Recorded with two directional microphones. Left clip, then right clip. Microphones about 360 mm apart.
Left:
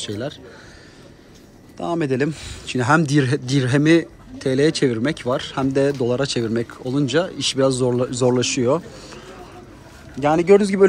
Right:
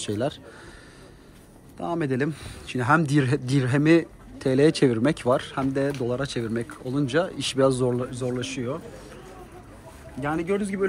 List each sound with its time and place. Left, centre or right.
0.0 s speech: centre
1.8 s speech: centre
10.2 s a man's voice: centre